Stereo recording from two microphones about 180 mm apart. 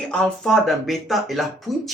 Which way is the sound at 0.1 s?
5° left (ahead or behind).